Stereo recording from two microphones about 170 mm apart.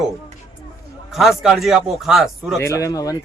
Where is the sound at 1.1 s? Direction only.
Centre (ahead or behind).